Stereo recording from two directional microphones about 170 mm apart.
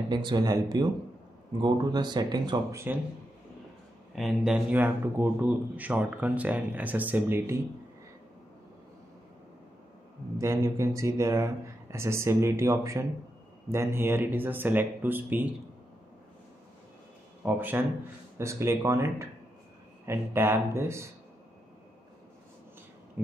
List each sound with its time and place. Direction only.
0.1 s speech: 25° right (ahead or behind)
4.1 s a man's voice: centre (ahead or behind)
10.4 s a man's voice: 15° right (ahead or behind)
17.5 s a man's voice: 10° right (ahead or behind)
23.2 s a sound: 10° right (ahead or behind)